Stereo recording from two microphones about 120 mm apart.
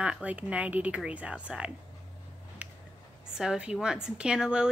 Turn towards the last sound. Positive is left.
turn(degrees=-5)  # may be behind; listen again after turning